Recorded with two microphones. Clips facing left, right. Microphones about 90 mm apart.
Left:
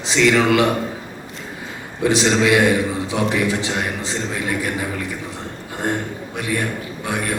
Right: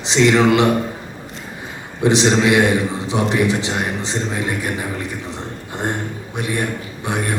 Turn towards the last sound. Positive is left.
turn(degrees=-20)  # may be behind; listen again after turning